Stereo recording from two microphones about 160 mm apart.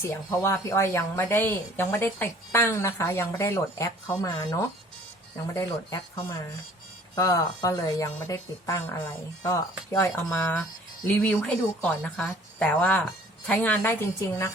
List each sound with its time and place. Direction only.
0.0 s a woman's voice: 15° left (ahead or behind)